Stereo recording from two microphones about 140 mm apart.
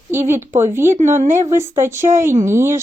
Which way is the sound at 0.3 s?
20° right (ahead or behind).